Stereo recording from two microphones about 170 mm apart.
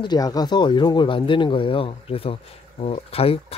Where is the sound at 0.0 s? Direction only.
25° left (ahead or behind).